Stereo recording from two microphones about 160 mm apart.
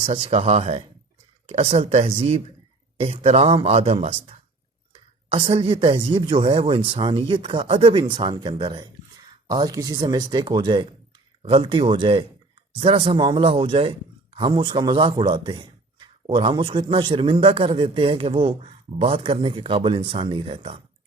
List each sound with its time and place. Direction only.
0.0 s a man's voice: 35° right (ahead or behind)